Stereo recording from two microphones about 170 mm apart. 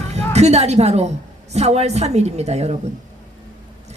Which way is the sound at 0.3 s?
40° right (ahead or behind).